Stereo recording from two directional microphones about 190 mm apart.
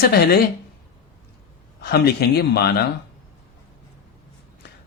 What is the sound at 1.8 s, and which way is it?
Speech, 55° left (ahead or behind).